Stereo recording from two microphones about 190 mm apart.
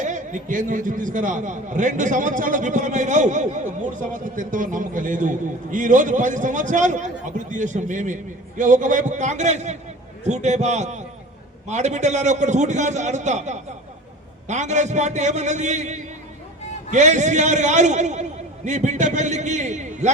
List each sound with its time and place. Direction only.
0.0 s a man's voice: 40° right (ahead or behind)